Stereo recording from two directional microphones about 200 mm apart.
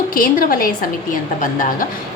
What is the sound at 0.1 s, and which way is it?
A woman's voice, 45° left (ahead or behind).